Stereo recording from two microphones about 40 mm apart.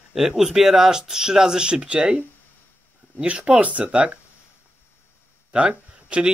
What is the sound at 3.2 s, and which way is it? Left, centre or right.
Speech, right.